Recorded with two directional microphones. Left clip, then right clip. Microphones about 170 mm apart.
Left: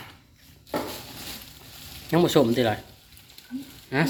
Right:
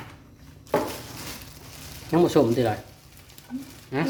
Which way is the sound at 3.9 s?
35° left (ahead or behind).